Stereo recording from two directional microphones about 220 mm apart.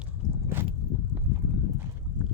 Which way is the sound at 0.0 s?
10° right (ahead or behind).